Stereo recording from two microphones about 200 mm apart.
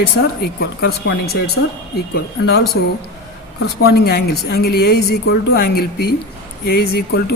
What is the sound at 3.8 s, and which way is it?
A woman's voice, 50° left (ahead or behind).